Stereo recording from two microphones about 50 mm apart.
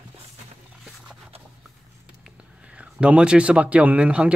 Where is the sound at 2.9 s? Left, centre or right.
Right.